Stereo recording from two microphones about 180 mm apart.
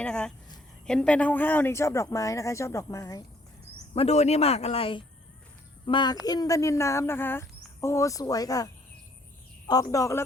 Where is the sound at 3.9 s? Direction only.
35° left (ahead or behind).